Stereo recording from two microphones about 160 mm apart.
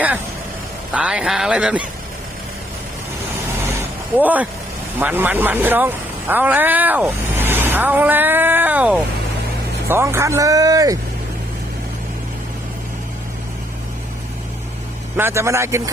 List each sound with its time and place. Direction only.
0.9 s a man's voice: 5° right (ahead or behind)
4.2 s a man's voice: 10° right (ahead or behind)
15.1 s a man's voice: 15° right (ahead or behind)